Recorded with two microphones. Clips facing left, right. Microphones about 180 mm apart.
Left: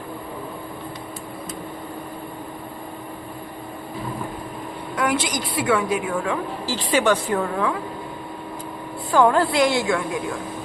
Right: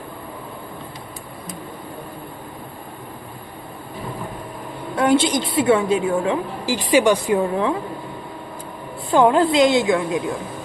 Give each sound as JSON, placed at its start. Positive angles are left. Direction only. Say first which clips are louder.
{"t": 4.9, "sound": "a woman's voice", "louder": "right 6 dB", "side_deg": -25}
{"t": 9.1, "sound": "a woman's voice", "louder": "right 3 dB", "side_deg": -20}